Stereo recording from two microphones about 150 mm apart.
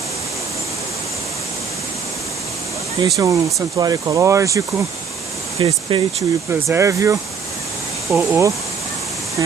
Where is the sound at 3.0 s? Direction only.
25° right (ahead or behind).